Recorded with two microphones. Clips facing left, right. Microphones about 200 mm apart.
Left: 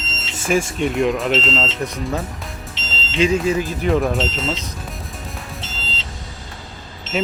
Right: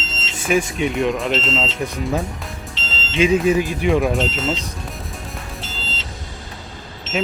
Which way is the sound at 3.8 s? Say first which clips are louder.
Even; centre (ahead or behind).